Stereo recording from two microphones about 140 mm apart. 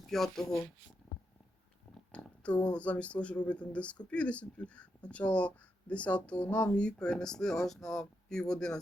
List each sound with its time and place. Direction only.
0.1 s speech: centre (ahead or behind)
2.1 s speech: 10° left (ahead or behind)